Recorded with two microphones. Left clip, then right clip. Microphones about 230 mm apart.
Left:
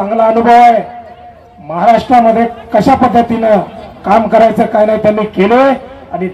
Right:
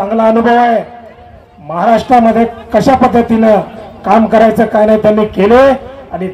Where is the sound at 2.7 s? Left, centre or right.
Right.